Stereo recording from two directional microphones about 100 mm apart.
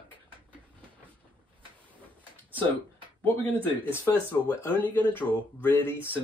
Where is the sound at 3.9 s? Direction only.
20° left (ahead or behind).